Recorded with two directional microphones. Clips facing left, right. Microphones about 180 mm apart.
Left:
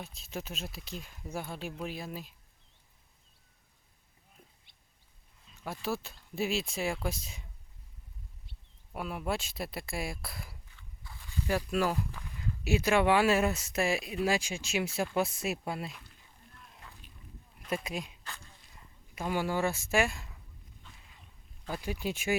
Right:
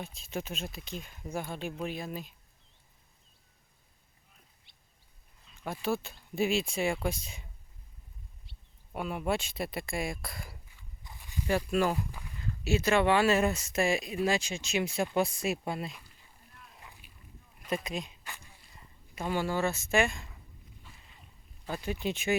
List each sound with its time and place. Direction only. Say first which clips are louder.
0.0 s speech: right 3 dB; centre (ahead or behind)
5.6 s speech: right 3 dB; centre (ahead or behind)
8.5 s a sound: left 1 dB; 50° left (ahead or behind)
8.9 s speech: right 3 dB; centre (ahead or behind)
10.8 s biting: even; 15° right (ahead or behind)
11.4 s speech: right 2 dB; centre (ahead or behind)
12.6 s speech: even; 10° left (ahead or behind); by 16.1 s 5° right (ahead or behind)
16.8 s a sound: left 2 dB; 15° right (ahead or behind)
17.7 s speech: right 1 dB; 10° left (ahead or behind)
18.2 s a sound: even; 15° right (ahead or behind)
19.1 s speech: even; 10° left (ahead or behind)
20.8 s a sound: right 1 dB; centre (ahead or behind)
21.7 s speech: right 1 dB; 5° left (ahead or behind)